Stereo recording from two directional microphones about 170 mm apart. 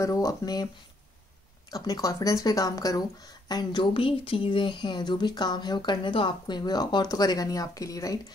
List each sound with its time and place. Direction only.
0.0 s speech: 20° left (ahead or behind)
1.7 s speech: 20° left (ahead or behind)